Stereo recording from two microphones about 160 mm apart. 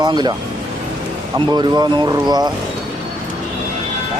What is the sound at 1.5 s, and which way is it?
Speech, 25° right (ahead or behind).